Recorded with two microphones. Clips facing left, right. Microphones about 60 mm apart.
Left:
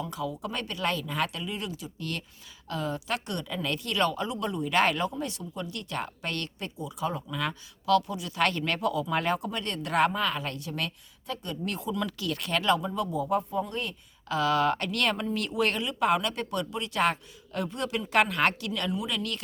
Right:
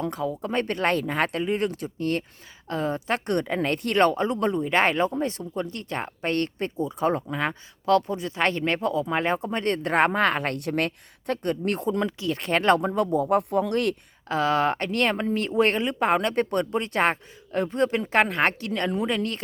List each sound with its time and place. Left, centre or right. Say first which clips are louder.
0.0 s speech: right 5 dB; right
2.6 s speech: right 5 dB; right
12.0 s speech: right 5 dB; right
14.3 s speech: right 2 dB; right